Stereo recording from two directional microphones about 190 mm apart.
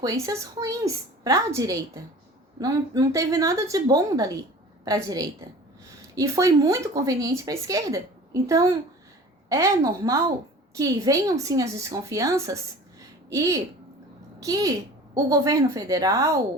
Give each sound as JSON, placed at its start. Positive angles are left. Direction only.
{"t": 0.0, "sound": "a woman's voice", "side_deg": -20}